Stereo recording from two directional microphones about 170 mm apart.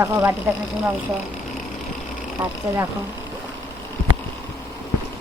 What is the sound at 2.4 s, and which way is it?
Speech, 20° right (ahead or behind).